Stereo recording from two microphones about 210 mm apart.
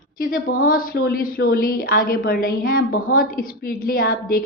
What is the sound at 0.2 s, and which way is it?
A woman's voice, 45° left (ahead or behind).